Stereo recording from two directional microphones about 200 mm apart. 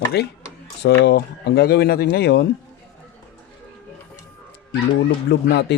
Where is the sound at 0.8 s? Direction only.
60° left (ahead or behind).